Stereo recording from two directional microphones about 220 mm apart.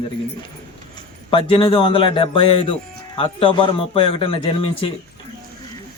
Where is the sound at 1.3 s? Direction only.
25° left (ahead or behind).